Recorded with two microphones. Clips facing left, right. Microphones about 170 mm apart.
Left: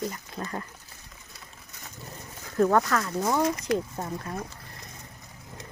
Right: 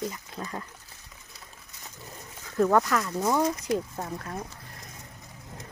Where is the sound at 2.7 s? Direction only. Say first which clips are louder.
Even; 10° right (ahead or behind).